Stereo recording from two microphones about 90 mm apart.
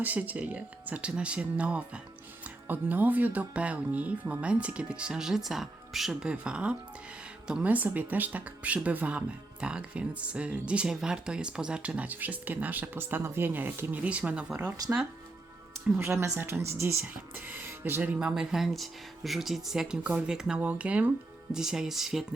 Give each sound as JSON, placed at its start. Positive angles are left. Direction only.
{"t": 0.0, "sound": "speech", "side_deg": -20}
{"t": 6.3, "sound": "speech", "side_deg": -10}
{"t": 16.0, "sound": "speech", "side_deg": -30}